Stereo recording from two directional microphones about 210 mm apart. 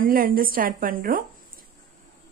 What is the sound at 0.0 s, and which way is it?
Speech, 45° right (ahead or behind).